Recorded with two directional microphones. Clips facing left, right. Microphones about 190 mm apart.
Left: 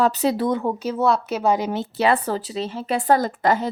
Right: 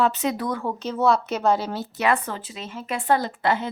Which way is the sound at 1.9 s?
30° left (ahead or behind).